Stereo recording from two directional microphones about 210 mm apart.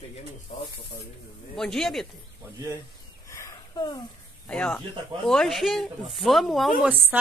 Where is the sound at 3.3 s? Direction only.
15° left (ahead or behind).